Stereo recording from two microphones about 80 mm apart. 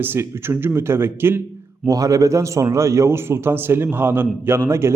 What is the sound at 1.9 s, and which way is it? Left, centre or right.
A man's voice, right.